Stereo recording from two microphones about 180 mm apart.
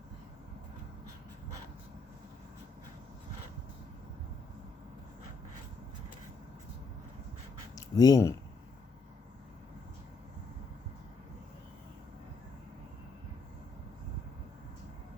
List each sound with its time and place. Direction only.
7.8 s speech: 20° left (ahead or behind)